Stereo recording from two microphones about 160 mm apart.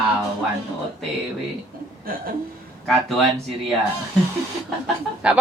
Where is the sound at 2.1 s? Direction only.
65° right (ahead or behind).